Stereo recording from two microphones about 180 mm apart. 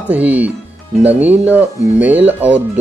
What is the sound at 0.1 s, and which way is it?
Speech, 10° right (ahead or behind).